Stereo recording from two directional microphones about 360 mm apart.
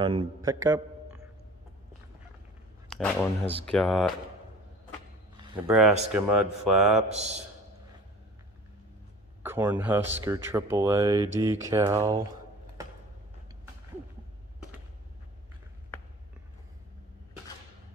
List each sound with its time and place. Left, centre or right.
0.0 s a man's voice: centre
2.9 s speech: centre
5.7 s speech: centre
7.0 s speech: centre
9.4 s speech: centre